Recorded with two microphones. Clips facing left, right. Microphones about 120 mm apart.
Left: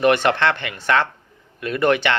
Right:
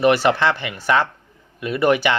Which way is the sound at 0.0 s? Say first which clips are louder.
Right 1 dB; 5° right (ahead or behind).